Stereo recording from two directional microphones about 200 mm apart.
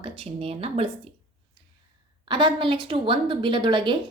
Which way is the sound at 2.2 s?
25° right (ahead or behind).